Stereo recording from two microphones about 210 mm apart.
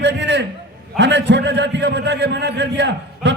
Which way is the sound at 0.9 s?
55° right (ahead or behind).